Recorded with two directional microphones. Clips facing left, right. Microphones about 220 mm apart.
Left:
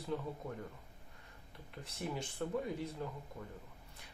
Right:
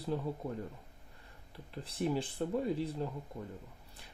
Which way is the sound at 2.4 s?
30° right (ahead or behind).